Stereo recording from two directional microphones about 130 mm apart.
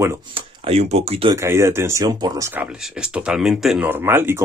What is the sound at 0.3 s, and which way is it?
Speech, 45° right (ahead or behind).